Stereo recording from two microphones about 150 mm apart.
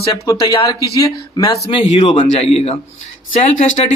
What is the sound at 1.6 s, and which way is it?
Speech, 45° left (ahead or behind).